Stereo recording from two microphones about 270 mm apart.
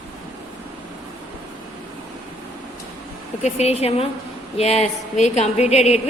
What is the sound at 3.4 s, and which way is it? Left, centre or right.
A woman's voice, left.